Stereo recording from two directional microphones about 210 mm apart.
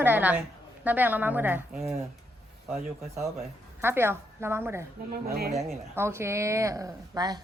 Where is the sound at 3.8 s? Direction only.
10° right (ahead or behind).